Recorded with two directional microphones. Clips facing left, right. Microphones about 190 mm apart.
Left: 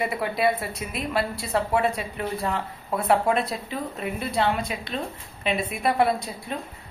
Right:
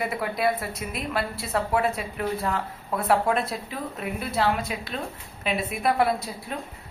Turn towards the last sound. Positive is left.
turn(degrees=0)  # may be behind; listen again after turning